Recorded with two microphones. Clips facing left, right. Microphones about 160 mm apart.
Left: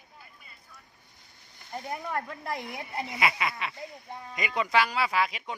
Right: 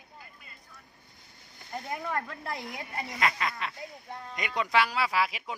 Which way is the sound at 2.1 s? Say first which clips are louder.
Left 3 dB; 15° left (ahead or behind).